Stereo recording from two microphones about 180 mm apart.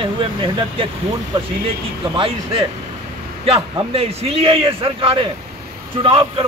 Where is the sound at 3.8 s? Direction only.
35° right (ahead or behind).